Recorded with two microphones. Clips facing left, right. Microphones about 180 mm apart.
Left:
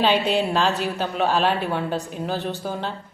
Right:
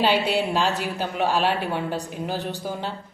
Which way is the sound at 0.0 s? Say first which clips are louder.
Left 1 dB; 10° right (ahead or behind).